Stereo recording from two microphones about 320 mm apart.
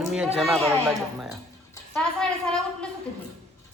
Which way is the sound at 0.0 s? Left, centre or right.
Centre.